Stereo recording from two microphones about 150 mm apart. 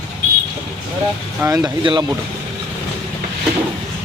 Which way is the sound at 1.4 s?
20° right (ahead or behind).